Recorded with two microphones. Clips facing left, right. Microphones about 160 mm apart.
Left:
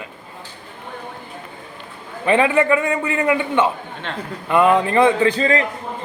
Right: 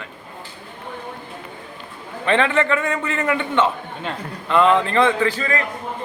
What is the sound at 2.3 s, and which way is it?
A man's voice, 10° left (ahead or behind).